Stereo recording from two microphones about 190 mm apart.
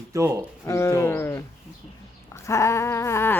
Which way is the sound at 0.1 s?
15° right (ahead or behind).